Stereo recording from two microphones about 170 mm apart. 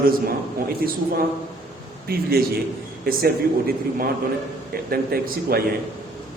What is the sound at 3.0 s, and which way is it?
A man's voice, 60° right (ahead or behind).